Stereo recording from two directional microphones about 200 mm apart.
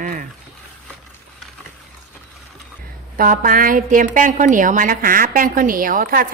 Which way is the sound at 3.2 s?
45° right (ahead or behind).